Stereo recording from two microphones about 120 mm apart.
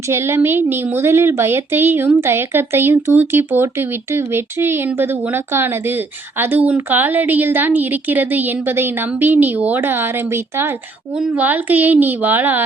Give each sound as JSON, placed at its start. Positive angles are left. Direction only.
{"t": 0.0, "sound": "a woman's voice", "side_deg": -25}